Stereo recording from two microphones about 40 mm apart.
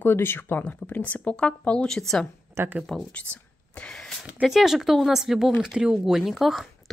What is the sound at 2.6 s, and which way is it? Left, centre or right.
Speech, right.